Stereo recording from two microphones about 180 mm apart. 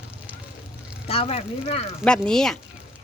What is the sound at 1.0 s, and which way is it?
Speech, 35° left (ahead or behind).